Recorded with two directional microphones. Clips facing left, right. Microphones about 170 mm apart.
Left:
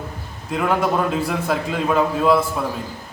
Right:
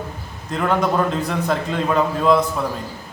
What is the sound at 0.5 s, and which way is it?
A man's voice, 5° left (ahead or behind).